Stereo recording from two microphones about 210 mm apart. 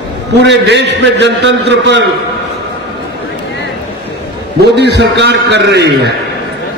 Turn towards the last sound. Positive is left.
turn(degrees=-55)  # may be behind; listen again after turning